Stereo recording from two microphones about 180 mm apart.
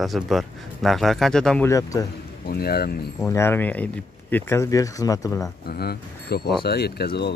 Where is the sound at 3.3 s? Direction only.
15° left (ahead or behind).